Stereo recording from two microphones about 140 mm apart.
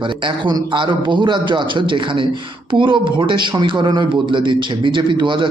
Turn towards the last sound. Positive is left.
turn(degrees=-35)  # may be behind; listen again after turning